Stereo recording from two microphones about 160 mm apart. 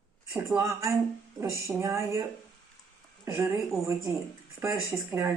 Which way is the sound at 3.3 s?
15° right (ahead or behind).